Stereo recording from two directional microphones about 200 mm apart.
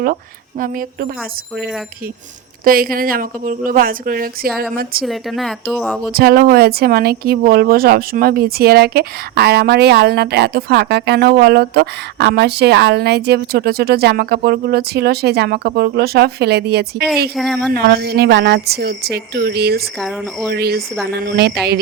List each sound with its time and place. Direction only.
0.6 s speech: 45° right (ahead or behind)
2.6 s speech: 45° right (ahead or behind)
5.0 s speech: centre (ahead or behind)
6.1 s speech: 50° right (ahead or behind)
17.3 s speech: centre (ahead or behind)
17.7 s speech: 50° right (ahead or behind)
20.0 s speech: centre (ahead or behind)
20.5 s speech: 50° right (ahead or behind)